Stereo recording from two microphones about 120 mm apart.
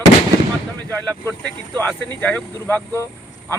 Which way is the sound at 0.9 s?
15° left (ahead or behind).